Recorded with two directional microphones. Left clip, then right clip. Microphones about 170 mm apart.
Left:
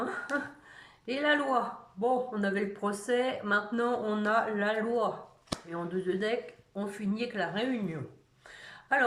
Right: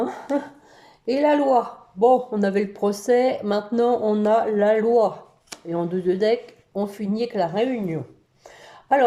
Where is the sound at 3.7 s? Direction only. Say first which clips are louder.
Right 11 dB; 35° right (ahead or behind).